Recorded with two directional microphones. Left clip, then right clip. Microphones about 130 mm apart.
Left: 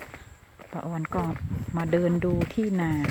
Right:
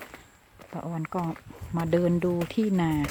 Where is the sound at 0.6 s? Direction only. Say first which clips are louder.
Left 2 dB; 10° right (ahead or behind).